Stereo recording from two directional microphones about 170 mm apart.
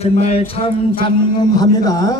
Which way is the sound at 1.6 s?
20° left (ahead or behind).